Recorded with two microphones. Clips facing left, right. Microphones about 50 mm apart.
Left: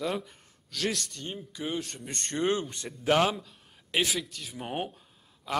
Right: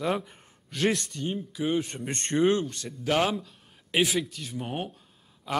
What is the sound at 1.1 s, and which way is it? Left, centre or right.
Speech, centre.